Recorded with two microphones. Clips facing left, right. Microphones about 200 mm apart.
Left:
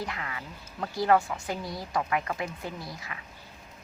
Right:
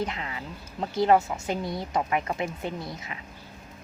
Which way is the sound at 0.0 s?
20° right (ahead or behind).